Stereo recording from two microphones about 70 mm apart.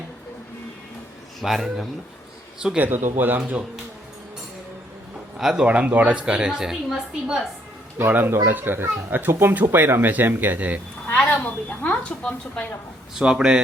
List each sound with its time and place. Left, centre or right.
1.4 s speech: centre
2.7 s a child's voice: right
5.4 s speech: centre
5.6 s a woman's voice: centre
7.9 s a child's voice: right
11.3 s a woman's voice: left
13.1 s a woman's voice: centre